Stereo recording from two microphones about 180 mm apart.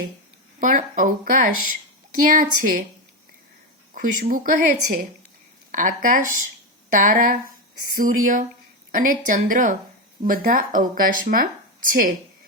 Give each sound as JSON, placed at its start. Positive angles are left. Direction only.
{"t": 0.6, "sound": "a woman's voice", "side_deg": -45}
{"t": 3.9, "sound": "a woman's voice", "side_deg": -50}